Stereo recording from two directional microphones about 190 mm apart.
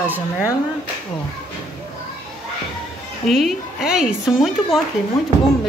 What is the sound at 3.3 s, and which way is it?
A woman's voice, centre (ahead or behind).